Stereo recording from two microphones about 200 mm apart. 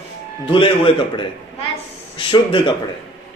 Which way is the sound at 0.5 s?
25° left (ahead or behind).